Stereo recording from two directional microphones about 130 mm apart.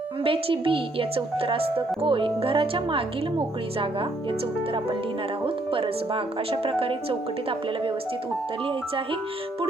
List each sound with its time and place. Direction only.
0.3 s speech: 45° right (ahead or behind)